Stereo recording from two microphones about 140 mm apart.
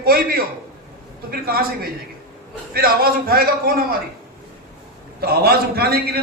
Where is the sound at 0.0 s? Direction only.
90° right.